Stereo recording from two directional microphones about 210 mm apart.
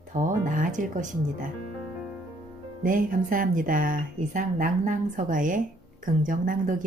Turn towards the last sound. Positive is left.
turn(degrees=-40)  # may be behind; listen again after turning